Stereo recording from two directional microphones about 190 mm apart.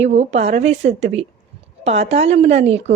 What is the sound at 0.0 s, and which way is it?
A woman's voice, 35° right (ahead or behind).